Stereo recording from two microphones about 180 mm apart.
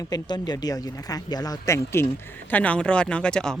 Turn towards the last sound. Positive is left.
turn(degrees=5)  # may be behind; listen again after turning